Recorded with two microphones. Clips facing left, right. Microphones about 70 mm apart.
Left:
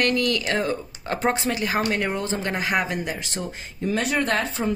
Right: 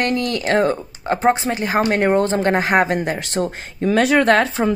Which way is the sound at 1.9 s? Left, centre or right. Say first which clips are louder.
Right 9 dB; right.